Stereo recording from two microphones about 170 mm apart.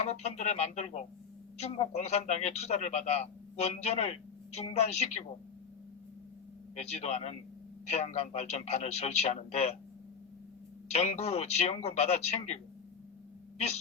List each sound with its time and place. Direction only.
0.0 s a man's voice: 40° left (ahead or behind)
6.7 s a man's voice: 40° left (ahead or behind)
10.9 s a man's voice: 40° left (ahead or behind)